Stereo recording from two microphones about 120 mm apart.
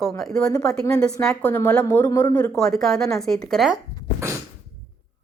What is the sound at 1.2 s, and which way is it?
Speech, 20° left (ahead or behind).